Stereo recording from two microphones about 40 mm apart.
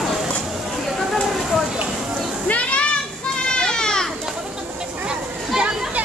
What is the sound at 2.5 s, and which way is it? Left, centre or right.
Children playing, left.